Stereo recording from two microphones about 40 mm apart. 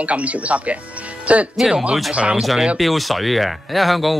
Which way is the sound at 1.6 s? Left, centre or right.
Centre.